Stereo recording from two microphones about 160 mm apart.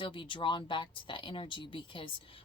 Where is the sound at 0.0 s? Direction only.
30° left (ahead or behind).